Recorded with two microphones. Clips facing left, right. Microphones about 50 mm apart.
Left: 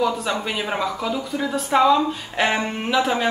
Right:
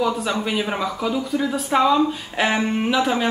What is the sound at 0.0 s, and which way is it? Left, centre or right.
Speech, centre.